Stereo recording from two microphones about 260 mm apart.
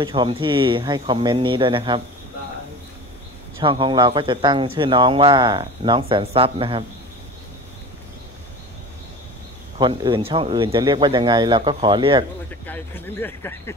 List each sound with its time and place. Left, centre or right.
0.0 s speech: centre
3.6 s speech: centre
9.8 s speech: centre
12.6 s speech: centre